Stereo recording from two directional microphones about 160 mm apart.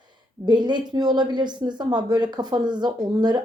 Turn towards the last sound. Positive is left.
turn(degrees=-25)  # may be behind; listen again after turning